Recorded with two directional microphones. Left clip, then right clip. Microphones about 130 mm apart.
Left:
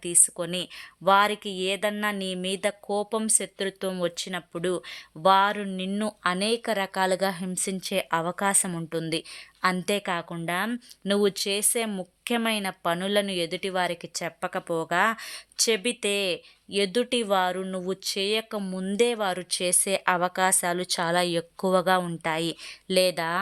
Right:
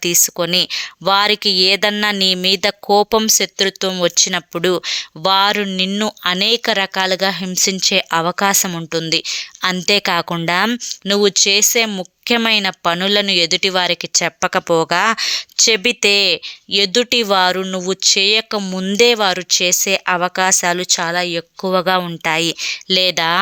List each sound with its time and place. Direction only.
0.0 s speech: 30° right (ahead or behind)
2.8 s speech: 35° right (ahead or behind)
10.1 s speech: 35° right (ahead or behind)
11.0 s speech: 20° right (ahead or behind)
14.3 s speech: 30° right (ahead or behind)